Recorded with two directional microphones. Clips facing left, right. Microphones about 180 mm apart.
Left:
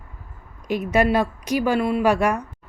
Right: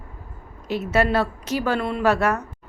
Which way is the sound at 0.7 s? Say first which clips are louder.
Left 2 dB; 15° left (ahead or behind).